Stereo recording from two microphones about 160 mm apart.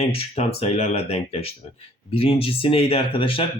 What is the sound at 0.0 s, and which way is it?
Speech, 40° left (ahead or behind).